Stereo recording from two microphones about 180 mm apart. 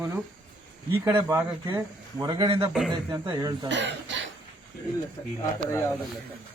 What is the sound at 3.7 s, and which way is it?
Speech, 80° right.